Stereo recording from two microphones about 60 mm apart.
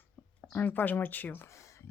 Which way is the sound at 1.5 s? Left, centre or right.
Left.